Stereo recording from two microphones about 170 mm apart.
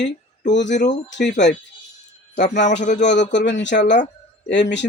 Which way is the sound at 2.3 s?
90° left.